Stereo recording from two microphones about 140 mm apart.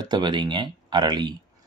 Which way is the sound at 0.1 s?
35° right (ahead or behind).